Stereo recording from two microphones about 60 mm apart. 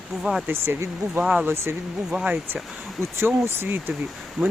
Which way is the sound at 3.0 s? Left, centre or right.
Right.